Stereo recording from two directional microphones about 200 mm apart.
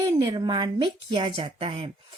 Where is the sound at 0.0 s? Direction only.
20° right (ahead or behind).